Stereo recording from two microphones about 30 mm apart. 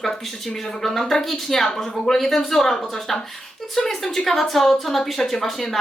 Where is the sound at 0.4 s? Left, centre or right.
Centre.